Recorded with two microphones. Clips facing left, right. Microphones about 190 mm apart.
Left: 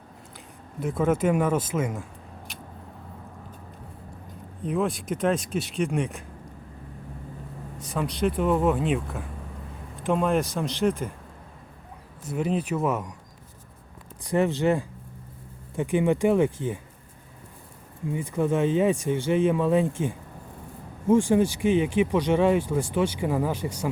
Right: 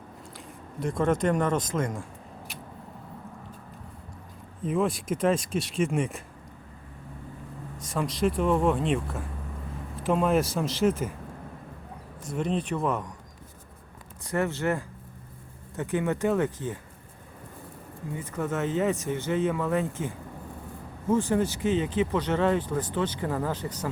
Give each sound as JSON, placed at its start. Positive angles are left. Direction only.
{"t": 0.8, "sound": "speech", "side_deg": 5}
{"t": 4.6, "sound": "speech", "side_deg": 0}
{"t": 7.9, "sound": "speech", "side_deg": 0}
{"t": 12.3, "sound": "speech", "side_deg": 5}
{"t": 14.3, "sound": "speech", "side_deg": 15}
{"t": 18.1, "sound": "speech", "side_deg": 15}